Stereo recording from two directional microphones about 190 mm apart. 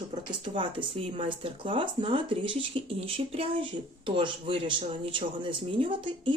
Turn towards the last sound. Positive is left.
turn(degrees=-25)  # may be behind; listen again after turning